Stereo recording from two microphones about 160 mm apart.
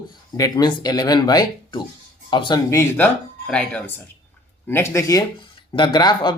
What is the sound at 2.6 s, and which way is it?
Speech, 15° left (ahead or behind).